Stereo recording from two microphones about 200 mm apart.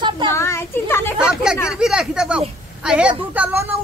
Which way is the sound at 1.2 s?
5° right (ahead or behind).